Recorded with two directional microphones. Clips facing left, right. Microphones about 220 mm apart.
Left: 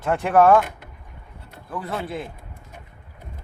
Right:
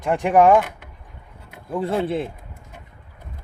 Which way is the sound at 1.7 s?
25° right (ahead or behind).